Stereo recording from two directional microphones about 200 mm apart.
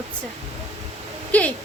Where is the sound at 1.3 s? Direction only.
5° left (ahead or behind).